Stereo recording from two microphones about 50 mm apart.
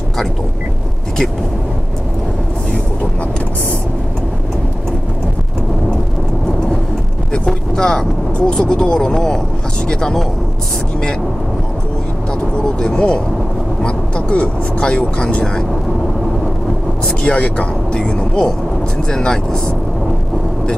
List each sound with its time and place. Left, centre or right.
7.3 s speech: centre
12.8 s speech: centre
17.0 s speech: left